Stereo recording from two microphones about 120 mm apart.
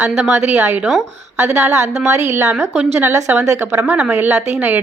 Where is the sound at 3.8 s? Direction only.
10° right (ahead or behind).